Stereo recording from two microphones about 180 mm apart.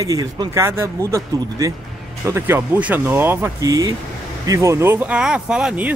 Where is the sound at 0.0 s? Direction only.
20° right (ahead or behind).